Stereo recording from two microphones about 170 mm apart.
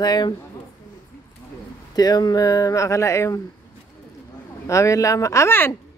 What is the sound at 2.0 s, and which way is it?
Speech, 25° left (ahead or behind).